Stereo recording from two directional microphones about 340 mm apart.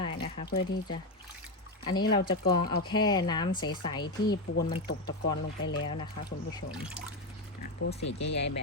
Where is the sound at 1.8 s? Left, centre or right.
Centre.